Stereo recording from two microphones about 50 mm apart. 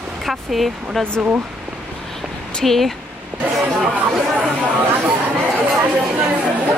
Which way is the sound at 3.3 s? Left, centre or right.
Right.